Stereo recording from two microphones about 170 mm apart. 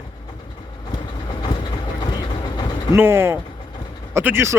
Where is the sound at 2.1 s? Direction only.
25° left (ahead or behind).